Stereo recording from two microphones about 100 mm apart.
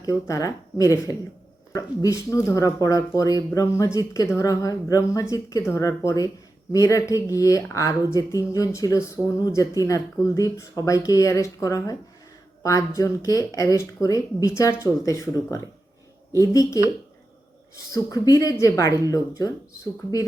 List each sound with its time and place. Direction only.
0.0 s speech: 35° left (ahead or behind)
13.0 s speech: 35° left (ahead or behind)
17.9 s speech: 35° left (ahead or behind)